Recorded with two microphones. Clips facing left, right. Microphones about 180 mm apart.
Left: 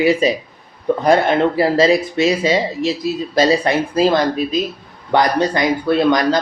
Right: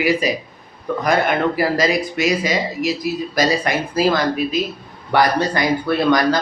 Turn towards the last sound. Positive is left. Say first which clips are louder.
# left 2 dB
turn(degrees=20)  # may be behind; listen again after turning